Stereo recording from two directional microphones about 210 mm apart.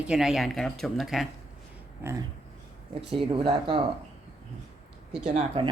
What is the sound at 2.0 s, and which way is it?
Speech, 15° right (ahead or behind).